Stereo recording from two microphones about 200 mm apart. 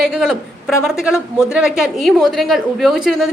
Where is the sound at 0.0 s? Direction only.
Centre (ahead or behind).